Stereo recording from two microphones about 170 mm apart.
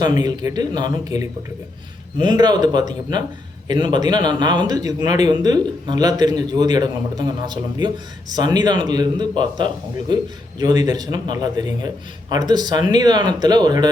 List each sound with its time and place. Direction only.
0.0 s speech: 25° right (ahead or behind)